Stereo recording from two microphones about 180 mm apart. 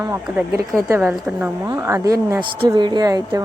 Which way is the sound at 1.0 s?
5° right (ahead or behind).